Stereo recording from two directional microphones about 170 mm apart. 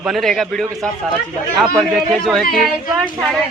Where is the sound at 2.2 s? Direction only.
Centre (ahead or behind).